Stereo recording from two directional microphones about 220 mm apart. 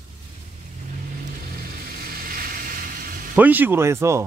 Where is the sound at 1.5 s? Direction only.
40° right (ahead or behind).